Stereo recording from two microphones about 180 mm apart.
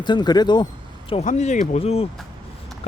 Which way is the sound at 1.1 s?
40° left (ahead or behind).